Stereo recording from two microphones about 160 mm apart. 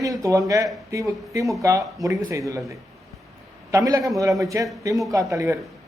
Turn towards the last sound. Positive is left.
turn(degrees=-20)  # may be behind; listen again after turning